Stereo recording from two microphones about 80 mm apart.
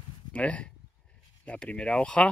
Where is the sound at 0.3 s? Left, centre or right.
Centre.